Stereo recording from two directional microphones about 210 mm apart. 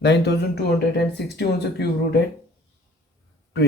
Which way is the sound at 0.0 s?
50° left (ahead or behind).